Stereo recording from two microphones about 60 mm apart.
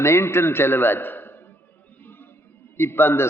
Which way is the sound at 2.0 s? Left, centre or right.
Left.